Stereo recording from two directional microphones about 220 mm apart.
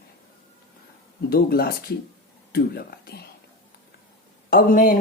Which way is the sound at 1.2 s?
45° left (ahead or behind).